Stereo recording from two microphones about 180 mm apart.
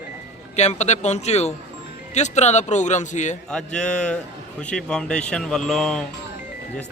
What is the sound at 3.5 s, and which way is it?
Speech, 5° left (ahead or behind).